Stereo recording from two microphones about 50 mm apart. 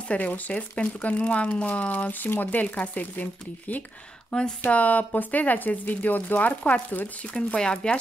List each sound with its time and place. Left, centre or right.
0.1 s speech: left
4.3 s speech: centre
4.6 s speech: left
7.3 s speech: left